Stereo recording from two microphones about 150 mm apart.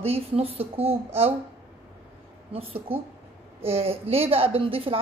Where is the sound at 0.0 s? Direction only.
40° right (ahead or behind).